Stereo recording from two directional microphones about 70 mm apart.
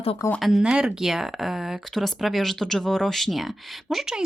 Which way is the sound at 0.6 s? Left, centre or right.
Centre.